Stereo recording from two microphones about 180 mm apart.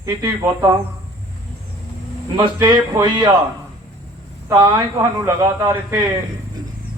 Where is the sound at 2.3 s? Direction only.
20° right (ahead or behind).